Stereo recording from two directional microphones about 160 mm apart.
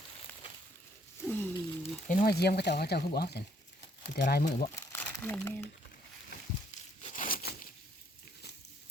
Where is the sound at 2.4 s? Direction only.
85° left.